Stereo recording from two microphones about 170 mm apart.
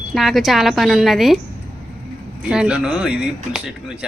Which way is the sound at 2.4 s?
5° right (ahead or behind).